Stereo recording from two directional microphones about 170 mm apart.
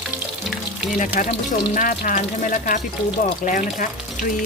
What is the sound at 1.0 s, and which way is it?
Speech, 50° left (ahead or behind).